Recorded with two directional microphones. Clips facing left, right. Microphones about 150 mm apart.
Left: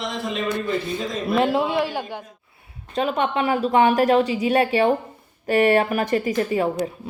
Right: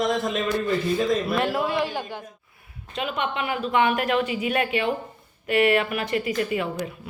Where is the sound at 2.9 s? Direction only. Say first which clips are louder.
Left 6 dB; 40° left (ahead or behind).